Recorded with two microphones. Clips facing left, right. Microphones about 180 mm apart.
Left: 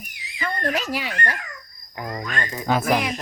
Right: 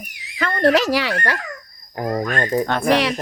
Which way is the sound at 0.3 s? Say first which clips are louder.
Right 9 dB; 80° right.